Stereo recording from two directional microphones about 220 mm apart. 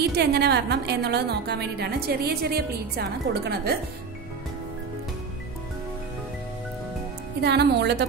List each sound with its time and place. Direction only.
0.1 s a woman's voice: 50° right (ahead or behind)
7.4 s a woman's voice: 50° right (ahead or behind)